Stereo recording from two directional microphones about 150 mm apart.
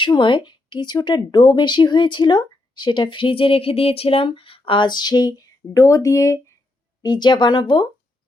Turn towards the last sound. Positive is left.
turn(degrees=30)  # may be behind; listen again after turning